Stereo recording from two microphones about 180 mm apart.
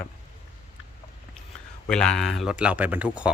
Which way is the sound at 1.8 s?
5° left (ahead or behind).